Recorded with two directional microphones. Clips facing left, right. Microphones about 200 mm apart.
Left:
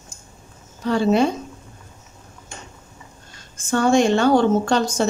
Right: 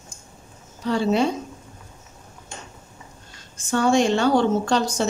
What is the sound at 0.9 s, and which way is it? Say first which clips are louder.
Speech: left 3 dB; 55° left (ahead or behind).